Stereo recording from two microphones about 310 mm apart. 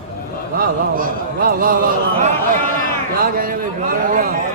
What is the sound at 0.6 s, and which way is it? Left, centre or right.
A man's voice, right.